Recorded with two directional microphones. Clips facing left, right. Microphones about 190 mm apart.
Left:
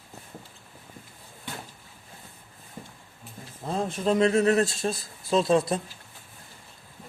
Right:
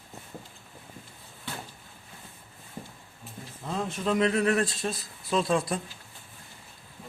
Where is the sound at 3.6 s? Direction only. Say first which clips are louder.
Left 3 dB; 35° left (ahead or behind).